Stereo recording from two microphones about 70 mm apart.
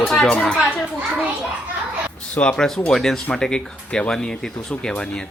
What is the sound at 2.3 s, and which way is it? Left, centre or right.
Speech, centre.